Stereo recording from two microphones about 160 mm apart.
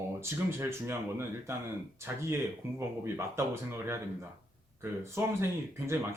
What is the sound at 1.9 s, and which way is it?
Speech, 15° right (ahead or behind).